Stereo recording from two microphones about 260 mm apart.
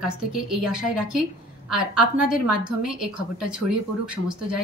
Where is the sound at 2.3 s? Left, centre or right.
Centre.